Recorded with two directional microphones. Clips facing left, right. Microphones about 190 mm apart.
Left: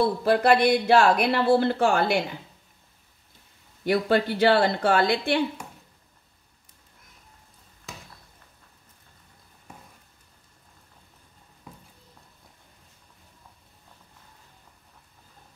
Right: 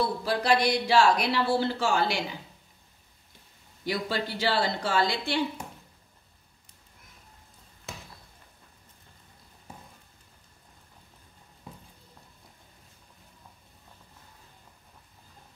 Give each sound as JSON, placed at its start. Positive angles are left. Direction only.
{"t": 0.2, "sound": "speech", "side_deg": 55}
{"t": 3.8, "sound": "speech", "side_deg": 55}